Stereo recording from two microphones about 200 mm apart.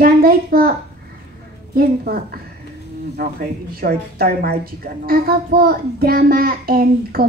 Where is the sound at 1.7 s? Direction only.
50° right (ahead or behind).